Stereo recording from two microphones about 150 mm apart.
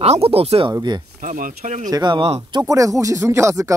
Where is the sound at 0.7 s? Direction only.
30° right (ahead or behind).